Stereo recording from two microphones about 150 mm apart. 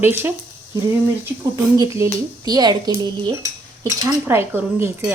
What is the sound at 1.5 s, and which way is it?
Speech, 20° right (ahead or behind).